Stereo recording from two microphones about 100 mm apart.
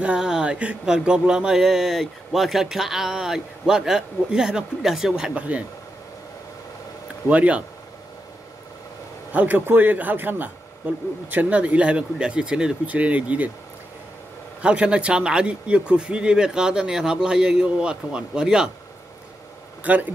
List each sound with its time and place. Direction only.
0.0 s a sound: 10° right (ahead or behind)
7.2 s a man's voice: 15° right (ahead or behind)
9.3 s a man's voice: 15° right (ahead or behind)
14.6 s a man's voice: 10° right (ahead or behind)
19.8 s speech: 15° right (ahead or behind)